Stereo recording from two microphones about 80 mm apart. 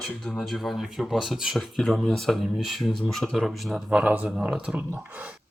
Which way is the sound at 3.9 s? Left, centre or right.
Centre.